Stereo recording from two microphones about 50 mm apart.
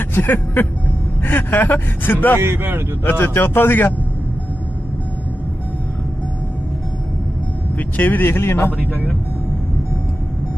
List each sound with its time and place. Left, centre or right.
0.0 s vehicle: left
1.2 s speech: left
2.4 s a man's voice: right
3.0 s speech: left
7.8 s speech: left
8.7 s speech: centre